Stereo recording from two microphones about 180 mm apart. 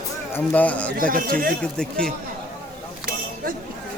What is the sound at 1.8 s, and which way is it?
Speech, 5° left (ahead or behind).